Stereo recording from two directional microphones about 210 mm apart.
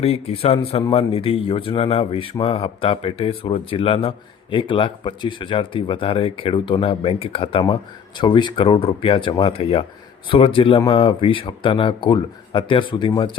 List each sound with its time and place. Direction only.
0.0 s speech: 30° left (ahead or behind)